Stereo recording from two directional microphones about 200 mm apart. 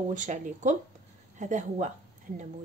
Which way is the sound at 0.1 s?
40° right (ahead or behind).